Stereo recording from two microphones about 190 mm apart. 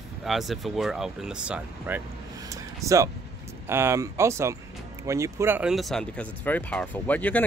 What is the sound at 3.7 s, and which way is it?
Speech, 15° right (ahead or behind).